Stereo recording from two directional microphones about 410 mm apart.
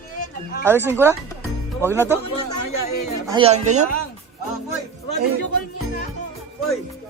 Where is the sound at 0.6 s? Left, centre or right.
Centre.